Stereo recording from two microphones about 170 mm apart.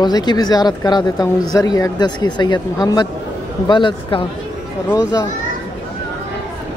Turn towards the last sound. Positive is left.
turn(degrees=20)  # may be behind; listen again after turning